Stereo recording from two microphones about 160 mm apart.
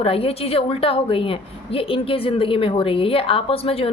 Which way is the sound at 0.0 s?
35° left (ahead or behind).